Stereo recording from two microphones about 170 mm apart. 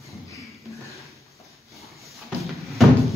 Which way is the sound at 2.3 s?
Centre (ahead or behind).